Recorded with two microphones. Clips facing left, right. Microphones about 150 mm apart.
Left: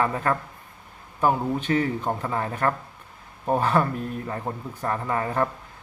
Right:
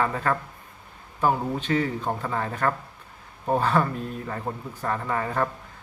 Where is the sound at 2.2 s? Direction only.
15° left (ahead or behind).